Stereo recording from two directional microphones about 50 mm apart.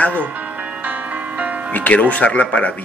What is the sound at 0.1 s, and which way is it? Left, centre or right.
Music, right.